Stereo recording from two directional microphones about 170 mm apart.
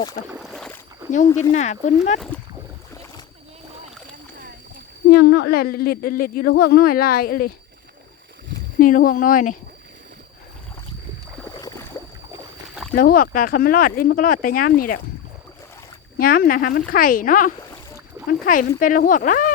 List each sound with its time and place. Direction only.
0.3 s boat: centre (ahead or behind)
1.1 s speech: 45° left (ahead or behind)
5.1 s speech: 90° left; by 7.5 s 60° left (ahead or behind)
8.8 s speech: 55° left (ahead or behind)
13.0 s speech: 60° left (ahead or behind)
16.1 s speech: 60° left (ahead or behind)